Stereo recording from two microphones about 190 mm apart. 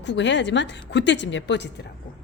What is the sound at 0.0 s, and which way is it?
A woman's voice, 70° left (ahead or behind).